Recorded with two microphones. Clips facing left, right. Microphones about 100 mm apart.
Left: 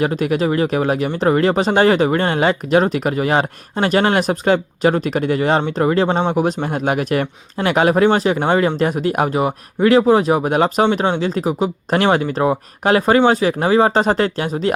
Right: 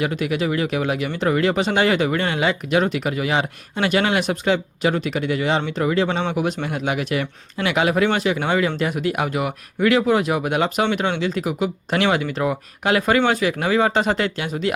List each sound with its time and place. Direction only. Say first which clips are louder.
0.0 s speech: left 5 dB; 40° left (ahead or behind)